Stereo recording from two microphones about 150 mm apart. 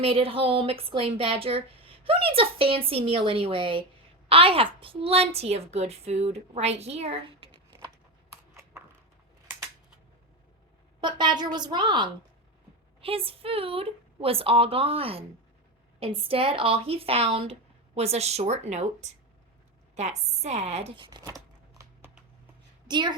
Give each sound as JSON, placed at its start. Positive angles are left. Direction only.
{"t": 0.0, "sound": "a woman's voice", "side_deg": -40}
{"t": 11.0, "sound": "a woman's voice", "side_deg": -30}
{"t": 20.9, "sound": "tearing", "side_deg": -30}
{"t": 22.9, "sound": "a woman's voice", "side_deg": -30}